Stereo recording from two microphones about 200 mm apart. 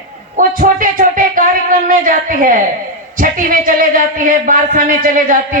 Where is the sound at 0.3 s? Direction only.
40° right (ahead or behind).